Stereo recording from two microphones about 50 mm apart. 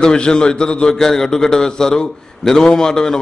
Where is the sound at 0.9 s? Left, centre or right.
Centre.